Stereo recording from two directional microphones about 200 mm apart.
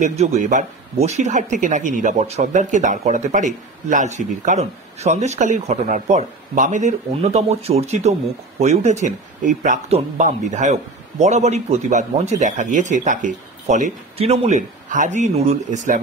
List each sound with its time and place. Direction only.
0.0 s speech: 35° right (ahead or behind)